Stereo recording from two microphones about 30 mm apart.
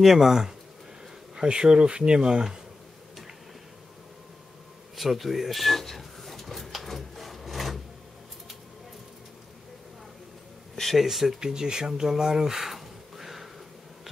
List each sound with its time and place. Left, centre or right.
0.0 s speech: centre
1.3 s speech: right
2.1 s speech: right
4.9 s drawer open or close: centre
11.0 s speech: centre
11.3 s speech: right